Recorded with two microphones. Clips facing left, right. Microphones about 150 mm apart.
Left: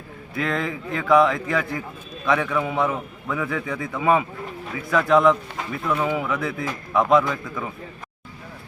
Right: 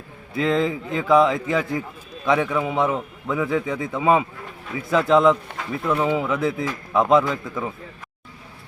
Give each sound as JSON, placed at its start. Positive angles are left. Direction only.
{"t": 0.3, "sound": "a man's voice", "side_deg": -25}